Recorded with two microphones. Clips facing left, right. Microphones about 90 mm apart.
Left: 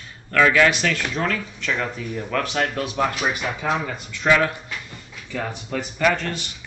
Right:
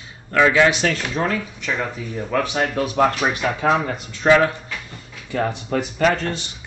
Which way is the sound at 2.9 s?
45° right (ahead or behind).